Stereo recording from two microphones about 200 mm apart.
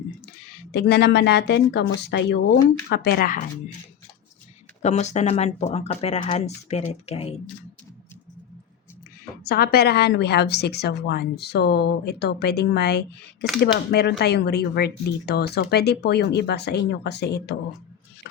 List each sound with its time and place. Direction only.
0.7 s a woman's voice: 55° left (ahead or behind)
4.8 s speech: 35° left (ahead or behind)
9.4 s a woman's voice: 50° left (ahead or behind)